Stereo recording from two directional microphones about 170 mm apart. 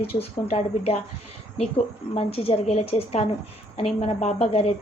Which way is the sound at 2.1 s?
35° left (ahead or behind).